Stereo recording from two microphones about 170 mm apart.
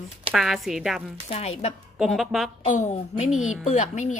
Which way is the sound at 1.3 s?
40° left (ahead or behind).